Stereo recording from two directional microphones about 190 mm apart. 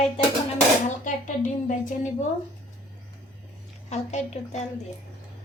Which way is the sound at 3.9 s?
35° left (ahead or behind).